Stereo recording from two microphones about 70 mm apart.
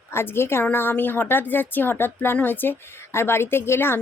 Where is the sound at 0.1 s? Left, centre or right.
Left.